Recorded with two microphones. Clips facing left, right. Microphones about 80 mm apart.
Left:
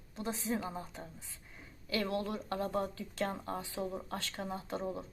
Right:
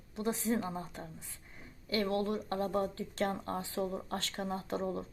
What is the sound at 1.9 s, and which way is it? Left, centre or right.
Speech, right.